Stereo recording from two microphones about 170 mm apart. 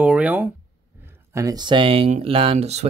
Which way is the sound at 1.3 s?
20° right (ahead or behind).